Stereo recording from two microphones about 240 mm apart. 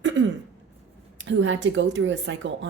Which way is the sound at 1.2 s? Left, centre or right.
Right.